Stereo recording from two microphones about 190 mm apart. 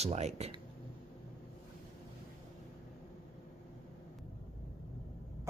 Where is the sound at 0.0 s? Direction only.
35° right (ahead or behind).